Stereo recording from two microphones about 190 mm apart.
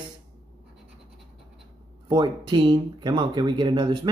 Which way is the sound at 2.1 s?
25° right (ahead or behind).